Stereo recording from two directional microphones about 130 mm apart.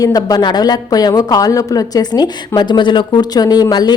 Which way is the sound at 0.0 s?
30° left (ahead or behind).